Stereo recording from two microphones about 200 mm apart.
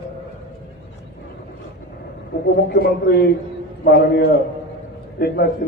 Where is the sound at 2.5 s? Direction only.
50° left (ahead or behind).